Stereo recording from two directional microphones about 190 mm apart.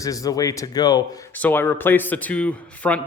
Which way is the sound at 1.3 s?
10° left (ahead or behind).